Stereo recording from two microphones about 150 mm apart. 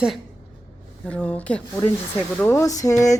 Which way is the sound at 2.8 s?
20° left (ahead or behind).